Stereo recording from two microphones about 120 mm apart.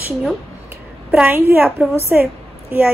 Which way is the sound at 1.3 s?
15° right (ahead or behind).